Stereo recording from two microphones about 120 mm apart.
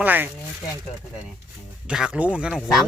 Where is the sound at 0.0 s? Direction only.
15° right (ahead or behind).